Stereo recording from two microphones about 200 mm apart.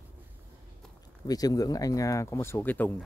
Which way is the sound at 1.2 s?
20° left (ahead or behind).